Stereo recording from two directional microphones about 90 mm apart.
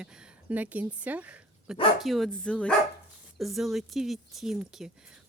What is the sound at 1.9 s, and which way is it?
Speech, centre (ahead or behind).